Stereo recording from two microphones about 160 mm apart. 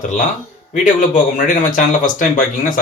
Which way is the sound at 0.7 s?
50° left (ahead or behind).